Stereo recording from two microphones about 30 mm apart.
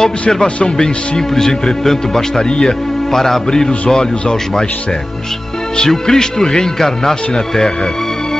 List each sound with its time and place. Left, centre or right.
1.3 s a man's voice: centre
3.9 s speech: left
6.1 s speech: centre
6.8 s a man's voice: centre